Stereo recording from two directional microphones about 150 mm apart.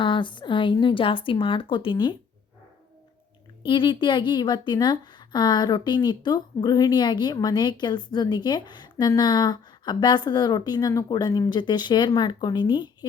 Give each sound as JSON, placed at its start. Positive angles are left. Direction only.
{"t": 0.0, "sound": "speech", "side_deg": 35}
{"t": 3.7, "sound": "a woman's voice", "side_deg": 30}